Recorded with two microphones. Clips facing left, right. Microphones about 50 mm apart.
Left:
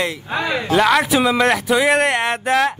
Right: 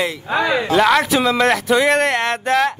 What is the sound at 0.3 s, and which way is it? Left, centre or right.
Speech, right.